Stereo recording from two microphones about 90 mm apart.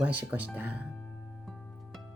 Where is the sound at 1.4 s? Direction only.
Centre (ahead or behind).